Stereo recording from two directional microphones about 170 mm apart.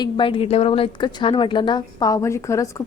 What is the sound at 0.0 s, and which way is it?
A woman's voice, 30° left (ahead or behind).